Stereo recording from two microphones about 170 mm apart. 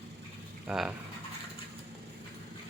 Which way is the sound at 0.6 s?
5° right (ahead or behind).